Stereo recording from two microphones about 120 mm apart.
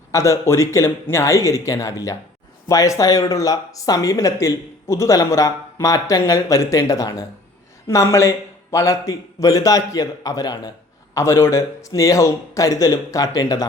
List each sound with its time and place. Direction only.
0.1 s speech: 25° left (ahead or behind)